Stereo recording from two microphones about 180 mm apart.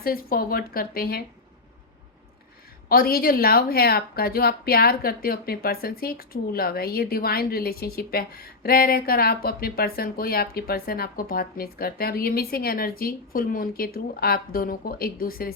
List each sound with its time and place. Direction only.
0.0 s speech: 55° left (ahead or behind)
2.9 s speech: 55° left (ahead or behind)